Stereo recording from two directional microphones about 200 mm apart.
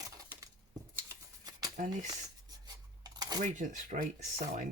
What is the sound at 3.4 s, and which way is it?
Speech, 40° right (ahead or behind).